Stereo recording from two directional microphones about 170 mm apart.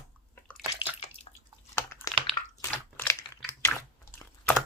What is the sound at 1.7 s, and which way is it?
Typing, 15° left (ahead or behind).